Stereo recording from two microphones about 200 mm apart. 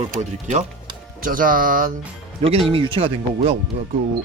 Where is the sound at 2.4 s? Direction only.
30° right (ahead or behind).